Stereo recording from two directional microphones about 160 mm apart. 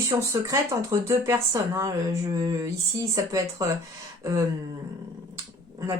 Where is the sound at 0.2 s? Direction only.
20° right (ahead or behind).